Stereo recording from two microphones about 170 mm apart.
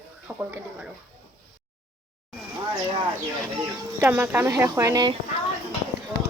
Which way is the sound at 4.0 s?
10° right (ahead or behind).